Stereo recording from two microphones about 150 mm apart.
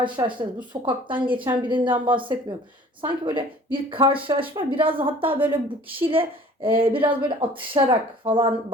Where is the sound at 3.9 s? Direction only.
35° right (ahead or behind).